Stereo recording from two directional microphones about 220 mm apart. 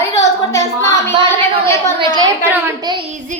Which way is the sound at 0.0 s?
15° left (ahead or behind).